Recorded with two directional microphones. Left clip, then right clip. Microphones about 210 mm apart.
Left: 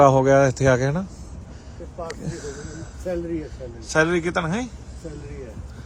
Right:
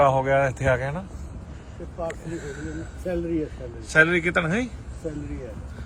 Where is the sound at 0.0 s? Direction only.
25° left (ahead or behind).